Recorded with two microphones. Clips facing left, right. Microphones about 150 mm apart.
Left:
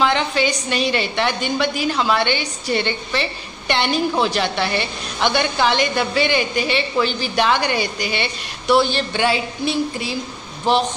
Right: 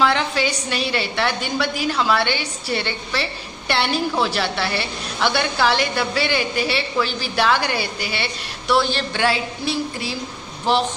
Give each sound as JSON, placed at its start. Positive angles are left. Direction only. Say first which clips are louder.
{"t": 0.0, "sound": "a woman's voice", "louder": "left 1 dB", "side_deg": -5}